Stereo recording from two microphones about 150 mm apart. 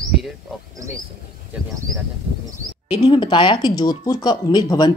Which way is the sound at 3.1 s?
30° left (ahead or behind).